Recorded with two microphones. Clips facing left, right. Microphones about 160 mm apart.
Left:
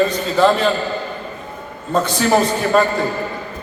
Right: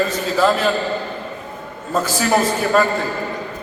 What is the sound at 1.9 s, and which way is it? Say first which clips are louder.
Speech: left 2 dB; 5° right (ahead or behind).